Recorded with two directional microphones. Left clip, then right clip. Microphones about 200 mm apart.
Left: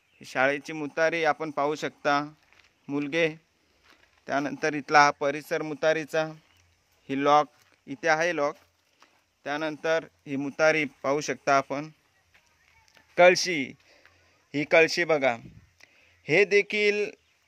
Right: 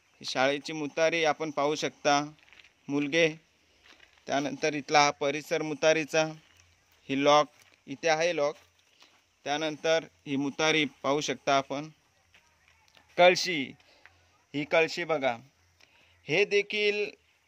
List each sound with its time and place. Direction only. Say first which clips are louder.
0.3 s a man's voice: left 2 dB; 5° left (ahead or behind)
12.9 s a sound: left 3 dB; 15° left (ahead or behind)
14.5 s a man's voice: left 5 dB; 25° left (ahead or behind)